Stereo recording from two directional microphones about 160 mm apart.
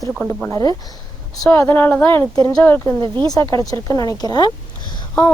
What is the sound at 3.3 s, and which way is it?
Speech, 20° left (ahead or behind).